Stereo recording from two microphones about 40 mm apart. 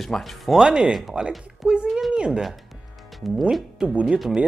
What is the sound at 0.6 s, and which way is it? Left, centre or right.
Speech, right.